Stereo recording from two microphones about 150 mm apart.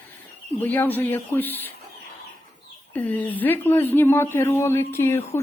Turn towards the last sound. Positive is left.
turn(degrees=15)  # may be behind; listen again after turning